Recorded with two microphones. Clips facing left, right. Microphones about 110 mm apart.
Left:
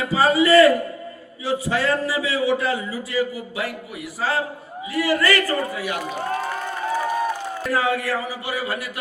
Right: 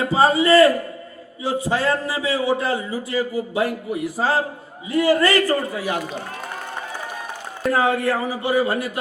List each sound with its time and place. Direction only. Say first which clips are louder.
0.0 s a sound: right 1 dB; 30° right (ahead or behind)
1.5 s a man's voice: right 1 dB; 35° right (ahead or behind)
7.7 s a man's voice: right 3 dB; 30° right (ahead or behind)